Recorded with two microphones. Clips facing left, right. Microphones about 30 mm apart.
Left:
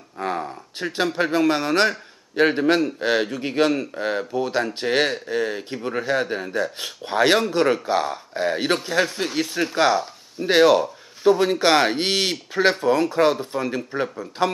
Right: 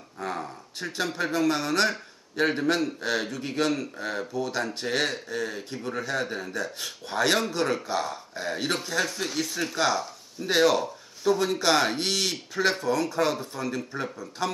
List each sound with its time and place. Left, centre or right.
0.2 s a sound: left
1.1 s speech: left
14.0 s speech: centre